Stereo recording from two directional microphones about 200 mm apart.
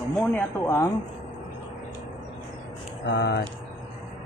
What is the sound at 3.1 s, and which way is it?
Speech, 60° left (ahead or behind).